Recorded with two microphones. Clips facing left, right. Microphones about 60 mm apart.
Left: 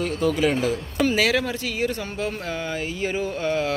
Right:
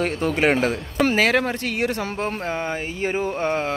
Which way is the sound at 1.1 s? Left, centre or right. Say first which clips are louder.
Right 3 dB; right.